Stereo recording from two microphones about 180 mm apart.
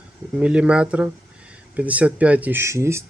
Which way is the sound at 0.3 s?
5° right (ahead or behind).